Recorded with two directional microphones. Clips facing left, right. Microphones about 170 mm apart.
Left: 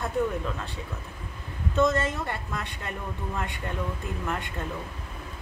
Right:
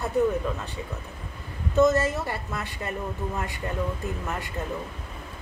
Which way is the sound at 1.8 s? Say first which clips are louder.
Right 4 dB; 5° right (ahead or behind).